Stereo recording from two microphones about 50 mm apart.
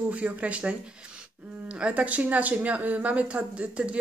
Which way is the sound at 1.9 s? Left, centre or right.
Right.